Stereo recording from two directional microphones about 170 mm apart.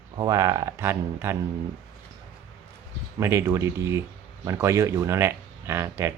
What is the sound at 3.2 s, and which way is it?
Speech, 15° right (ahead or behind).